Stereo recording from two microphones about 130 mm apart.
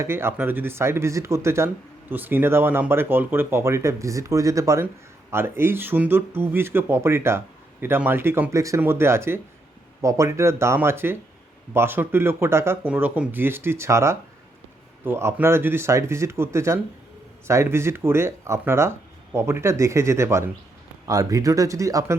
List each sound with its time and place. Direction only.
0.0 s speech: 20° right (ahead or behind)